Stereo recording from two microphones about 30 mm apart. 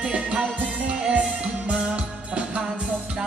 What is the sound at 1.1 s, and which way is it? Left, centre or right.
Music, right.